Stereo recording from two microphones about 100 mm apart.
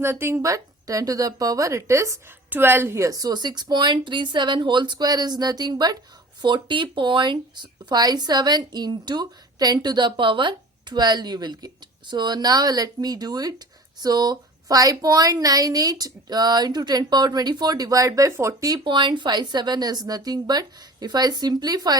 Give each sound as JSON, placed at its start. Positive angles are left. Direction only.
{"t": 0.0, "sound": "a woman's voice", "side_deg": -25}
{"t": 6.4, "sound": "a woman's voice", "side_deg": -50}
{"t": 18.7, "sound": "a woman's voice", "side_deg": -50}